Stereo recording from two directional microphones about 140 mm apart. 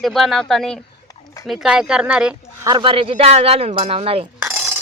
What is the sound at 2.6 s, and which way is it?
Speech, 35° right (ahead or behind).